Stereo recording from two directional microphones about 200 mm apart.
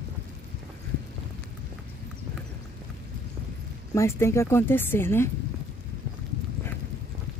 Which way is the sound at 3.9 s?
15° left (ahead or behind).